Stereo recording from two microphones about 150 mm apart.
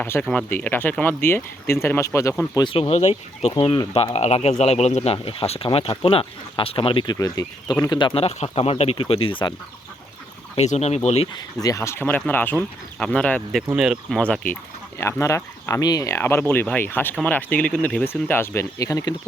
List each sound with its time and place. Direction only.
0.0 s speech: 10° left (ahead or behind)
2.6 s speech: 35° left (ahead or behind)
3.5 s speech: 30° left (ahead or behind)
10.5 s speech: 45° left (ahead or behind)
11.6 s speech: 20° left (ahead or behind); by 14.2 s 5° right (ahead or behind)
14.2 s speech: 10° left (ahead or behind)